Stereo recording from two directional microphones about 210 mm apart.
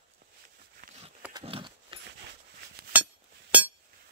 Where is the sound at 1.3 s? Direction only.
25° right (ahead or behind).